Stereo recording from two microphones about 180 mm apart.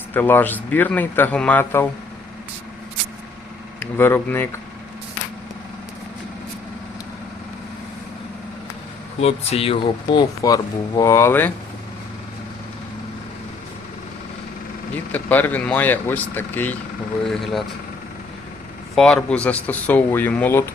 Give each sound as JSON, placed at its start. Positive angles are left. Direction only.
{"t": 0.1, "sound": "a man's voice", "side_deg": 10}
{"t": 3.8, "sound": "a man's voice", "side_deg": 10}
{"t": 9.2, "sound": "speech", "side_deg": 35}
{"t": 15.1, "sound": "a man's voice", "side_deg": 10}
{"t": 17.2, "sound": "speech", "side_deg": 0}
{"t": 18.9, "sound": "a man's voice", "side_deg": 5}